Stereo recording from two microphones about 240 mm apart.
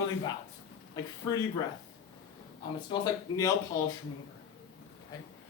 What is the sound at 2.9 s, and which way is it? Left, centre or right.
Speech, centre.